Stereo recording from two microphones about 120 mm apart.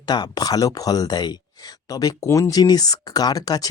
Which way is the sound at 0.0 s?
35° left (ahead or behind).